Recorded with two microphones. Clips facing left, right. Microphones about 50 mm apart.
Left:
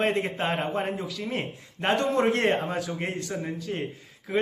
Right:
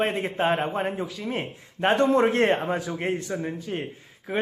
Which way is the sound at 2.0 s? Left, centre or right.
Right.